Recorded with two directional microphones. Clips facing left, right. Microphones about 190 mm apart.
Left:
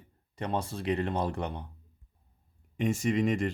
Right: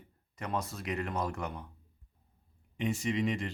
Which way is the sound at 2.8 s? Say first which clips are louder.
Left 4 dB; 45° left (ahead or behind).